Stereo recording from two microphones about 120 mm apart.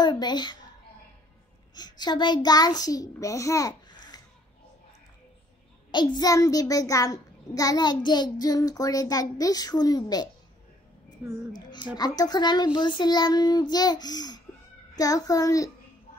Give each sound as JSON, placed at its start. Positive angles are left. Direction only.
{"t": 0.0, "sound": "a child's voice", "side_deg": 35}
{"t": 1.8, "sound": "a child's voice", "side_deg": 35}
{"t": 5.9, "sound": "a child's voice", "side_deg": 35}
{"t": 12.0, "sound": "a child's voice", "side_deg": 35}